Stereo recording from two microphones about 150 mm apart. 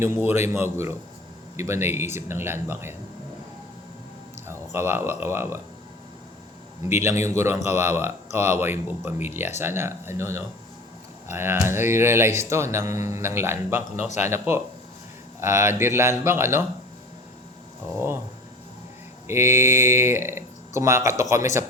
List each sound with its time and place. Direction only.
0.0 s speech: 15° right (ahead or behind)
4.4 s speech: 15° right (ahead or behind)
6.8 s speech: 15° right (ahead or behind)
19.3 s speech: 15° right (ahead or behind)